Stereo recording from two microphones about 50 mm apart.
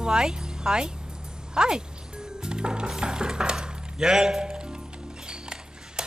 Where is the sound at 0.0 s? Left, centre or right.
Centre.